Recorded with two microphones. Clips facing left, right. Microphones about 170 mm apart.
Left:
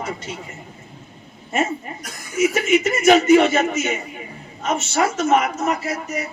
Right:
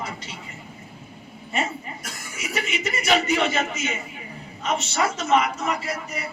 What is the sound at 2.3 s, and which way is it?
A man's voice, 45° left (ahead or behind).